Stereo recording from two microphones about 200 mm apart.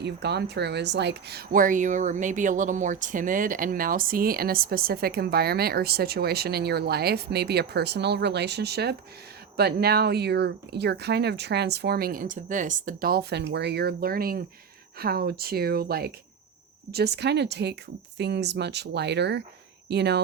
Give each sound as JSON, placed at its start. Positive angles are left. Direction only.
{"t": 0.0, "sound": "speech", "side_deg": -55}